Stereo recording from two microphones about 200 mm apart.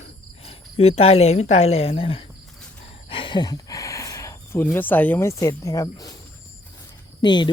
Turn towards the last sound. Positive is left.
turn(degrees=20)  # may be behind; listen again after turning